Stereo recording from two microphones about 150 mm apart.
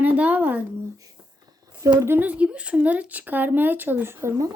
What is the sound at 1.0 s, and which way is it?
A woman's voice, 25° right (ahead or behind).